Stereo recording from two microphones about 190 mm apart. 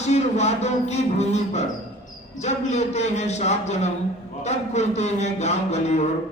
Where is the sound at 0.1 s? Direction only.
35° left (ahead or behind).